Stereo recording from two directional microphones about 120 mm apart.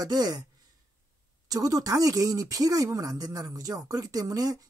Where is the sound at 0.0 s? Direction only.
30° right (ahead or behind).